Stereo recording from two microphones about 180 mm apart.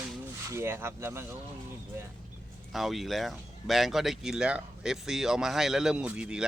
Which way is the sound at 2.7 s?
Centre (ahead or behind).